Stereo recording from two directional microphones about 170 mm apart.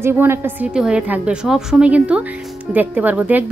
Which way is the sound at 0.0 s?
15° right (ahead or behind).